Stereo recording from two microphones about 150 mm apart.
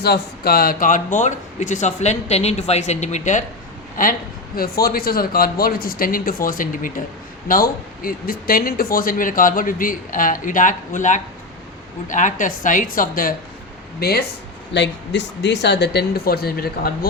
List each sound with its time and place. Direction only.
0.0 s speech: 90° left; by 3.4 s 50° left (ahead or behind)
4.0 s a woman's voice: 65° left (ahead or behind)
4.5 s a woman's voice: 85° left; by 13.3 s 70° left (ahead or behind)
14.0 s speech: 90° left
15.9 s speech: 90° left